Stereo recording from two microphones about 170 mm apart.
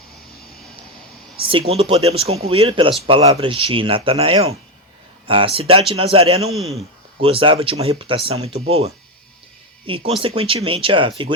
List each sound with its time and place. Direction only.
1.5 s speech: 35° right (ahead or behind)